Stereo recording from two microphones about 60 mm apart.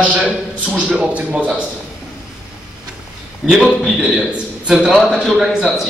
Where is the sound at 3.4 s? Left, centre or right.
Centre.